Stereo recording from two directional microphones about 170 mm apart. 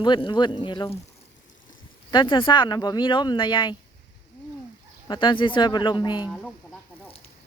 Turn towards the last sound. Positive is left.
turn(degrees=25)  # may be behind; listen again after turning